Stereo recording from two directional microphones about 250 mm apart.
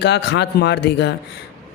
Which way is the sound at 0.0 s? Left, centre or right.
Left.